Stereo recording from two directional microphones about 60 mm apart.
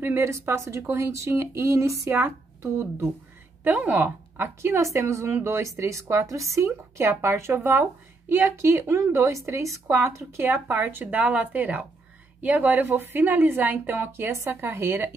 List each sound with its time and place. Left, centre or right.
0.2 s a woman's voice: right
3.8 s a woman's voice: right
4.6 s a woman's voice: right
7.5 s a woman's voice: right